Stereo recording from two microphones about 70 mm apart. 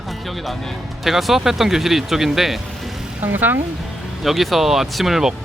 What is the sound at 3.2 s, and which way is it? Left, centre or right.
Speech, right.